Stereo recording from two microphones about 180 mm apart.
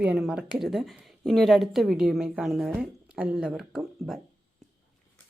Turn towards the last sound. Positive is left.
turn(degrees=0)  # may be behind; listen again after turning